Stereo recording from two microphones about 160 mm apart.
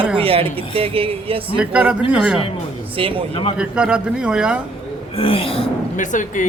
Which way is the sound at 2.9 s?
35° right (ahead or behind).